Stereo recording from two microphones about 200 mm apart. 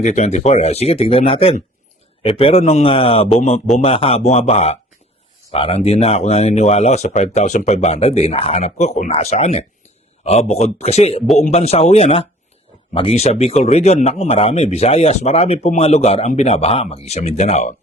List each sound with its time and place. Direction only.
0.0 s a man's voice: 35° left (ahead or behind)